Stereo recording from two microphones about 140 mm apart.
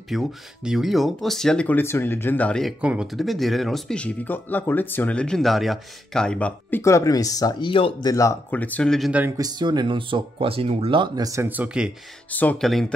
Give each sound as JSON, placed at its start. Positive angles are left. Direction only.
{"t": 0.1, "sound": "speech", "side_deg": 0}
{"t": 2.8, "sound": "speech", "side_deg": -10}
{"t": 6.8, "sound": "speech", "side_deg": 20}
{"t": 7.7, "sound": "speech", "side_deg": 40}
{"t": 8.1, "sound": "speech", "side_deg": 25}
{"t": 8.5, "sound": "speech", "side_deg": 10}
{"t": 9.4, "sound": "speech", "side_deg": -30}
{"t": 11.4, "sound": "speech", "side_deg": -10}
{"t": 12.3, "sound": "speech", "side_deg": 10}